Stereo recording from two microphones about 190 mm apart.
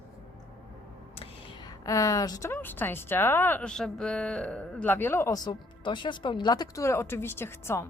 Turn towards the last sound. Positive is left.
turn(degrees=10)  # may be behind; listen again after turning